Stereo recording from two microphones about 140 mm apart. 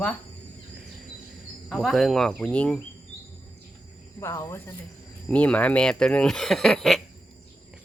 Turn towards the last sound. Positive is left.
turn(degrees=5)  # may be behind; listen again after turning